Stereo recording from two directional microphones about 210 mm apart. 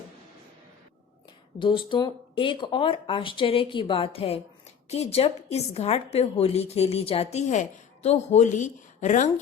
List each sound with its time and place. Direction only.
1.5 s a woman's voice: 25° left (ahead or behind)